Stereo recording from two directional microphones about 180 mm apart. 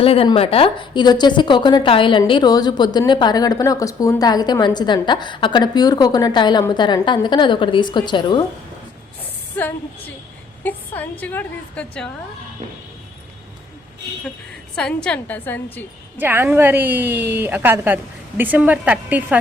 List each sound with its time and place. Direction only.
0.0 s a woman's voice: 30° left (ahead or behind)
10.6 s a woman's voice: 10° left (ahead or behind)
14.8 s a woman's voice: 5° left (ahead or behind)
16.1 s a woman's voice: 10° right (ahead or behind)